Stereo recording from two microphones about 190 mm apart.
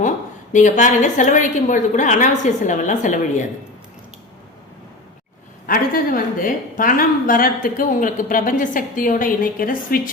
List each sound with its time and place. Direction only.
0.5 s a woman's voice: 40° left (ahead or behind)
5.6 s a woman's voice: 50° left (ahead or behind)